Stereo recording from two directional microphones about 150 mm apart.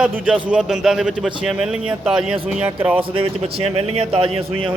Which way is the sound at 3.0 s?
40° right (ahead or behind).